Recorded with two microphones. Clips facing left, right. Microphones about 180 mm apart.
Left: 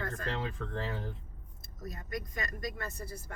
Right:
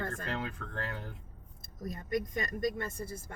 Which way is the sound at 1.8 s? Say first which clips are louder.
Right 6 dB; 25° right (ahead or behind).